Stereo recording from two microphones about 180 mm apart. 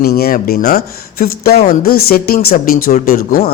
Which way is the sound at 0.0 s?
60° left (ahead or behind).